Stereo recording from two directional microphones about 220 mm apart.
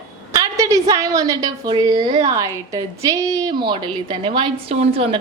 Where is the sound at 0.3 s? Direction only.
15° right (ahead or behind).